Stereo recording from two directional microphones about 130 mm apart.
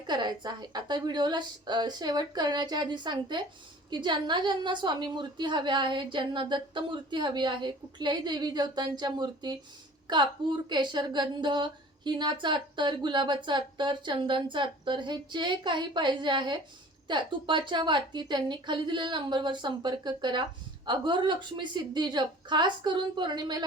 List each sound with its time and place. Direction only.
0.1 s a woman's voice: 35° right (ahead or behind)